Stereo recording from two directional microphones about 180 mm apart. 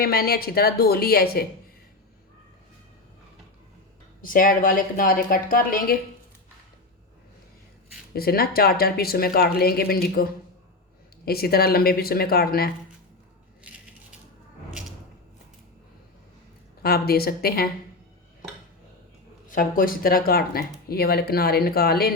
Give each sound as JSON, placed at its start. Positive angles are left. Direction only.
{"t": 0.0, "sound": "speech", "side_deg": 55}
{"t": 4.2, "sound": "a woman's voice", "side_deg": 50}
{"t": 8.1, "sound": "speech", "side_deg": 55}
{"t": 14.7, "sound": "a sound", "side_deg": -5}
{"t": 16.8, "sound": "speech", "side_deg": 60}
{"t": 19.5, "sound": "speech", "side_deg": 50}